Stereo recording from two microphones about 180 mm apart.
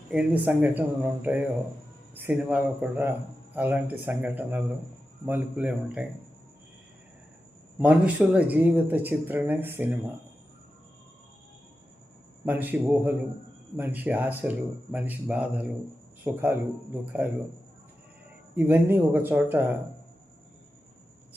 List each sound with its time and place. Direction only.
0.1 s speech: 10° right (ahead or behind)
7.8 s speech: 5° right (ahead or behind)
12.5 s speech: 10° right (ahead or behind)
18.5 s speech: 10° right (ahead or behind)